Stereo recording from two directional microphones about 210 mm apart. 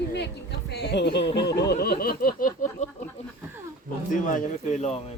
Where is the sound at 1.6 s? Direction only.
50° left (ahead or behind).